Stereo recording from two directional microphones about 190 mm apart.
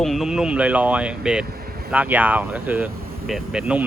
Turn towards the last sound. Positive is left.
turn(degrees=-5)  # may be behind; listen again after turning